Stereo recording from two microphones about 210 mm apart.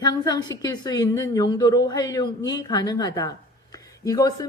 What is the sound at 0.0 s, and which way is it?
A woman's voice, 20° left (ahead or behind).